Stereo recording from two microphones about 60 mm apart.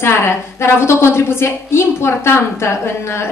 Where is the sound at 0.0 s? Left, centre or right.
Left.